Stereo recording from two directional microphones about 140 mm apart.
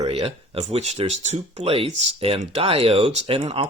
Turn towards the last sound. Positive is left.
turn(degrees=-45)  # may be behind; listen again after turning